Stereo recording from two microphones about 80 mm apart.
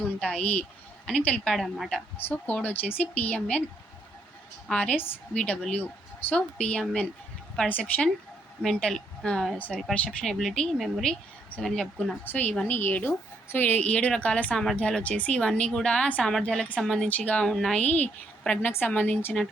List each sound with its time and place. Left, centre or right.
0.0 s a sound: centre
0.3 s a woman's voice: centre
1.5 s a woman's voice: centre
2.1 s a woman's voice: left
4.7 s a woman's voice: centre
8.9 s a woman's voice: centre
9.6 s a woman's voice: centre
10.2 s a woman's voice: centre
12.2 s a woman's voice: left
14.5 s a woman's voice: centre
17.1 s a woman's voice: centre